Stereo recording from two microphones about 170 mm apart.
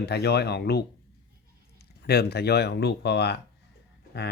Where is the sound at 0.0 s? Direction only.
75° left (ahead or behind).